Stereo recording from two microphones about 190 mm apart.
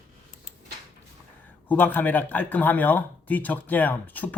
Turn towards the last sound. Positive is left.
turn(degrees=10)  # may be behind; listen again after turning